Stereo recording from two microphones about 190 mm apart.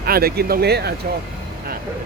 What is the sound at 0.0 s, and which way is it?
Speech, 55° right (ahead or behind).